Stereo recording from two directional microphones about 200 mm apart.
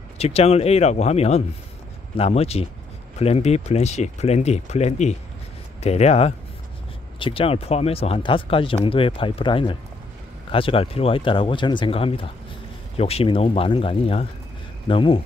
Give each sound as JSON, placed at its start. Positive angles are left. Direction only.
{"t": 0.2, "sound": "speech", "side_deg": 30}